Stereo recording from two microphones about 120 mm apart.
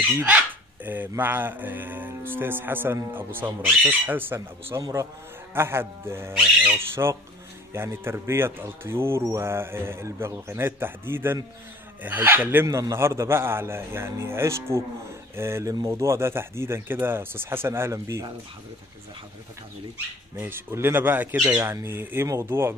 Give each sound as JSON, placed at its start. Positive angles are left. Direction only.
{"t": 0.8, "sound": "music", "side_deg": -15}
{"t": 5.5, "sound": "speech", "side_deg": -20}
{"t": 7.0, "sound": "speech", "side_deg": -25}
{"t": 12.0, "sound": "music", "side_deg": -15}
{"t": 12.6, "sound": "speech", "side_deg": -25}
{"t": 20.3, "sound": "music", "side_deg": -20}
{"t": 21.6, "sound": "speech", "side_deg": -20}